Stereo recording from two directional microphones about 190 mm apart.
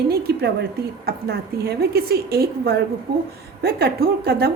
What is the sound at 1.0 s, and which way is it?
A woman's voice, 55° right (ahead or behind).